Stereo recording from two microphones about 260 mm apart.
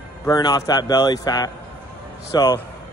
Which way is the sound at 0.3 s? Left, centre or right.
Centre.